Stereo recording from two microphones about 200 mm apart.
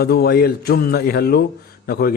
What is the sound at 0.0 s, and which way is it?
A man's voice, 50° left (ahead or behind).